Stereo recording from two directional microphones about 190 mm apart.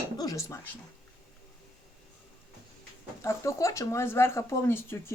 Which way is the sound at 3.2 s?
15° left (ahead or behind).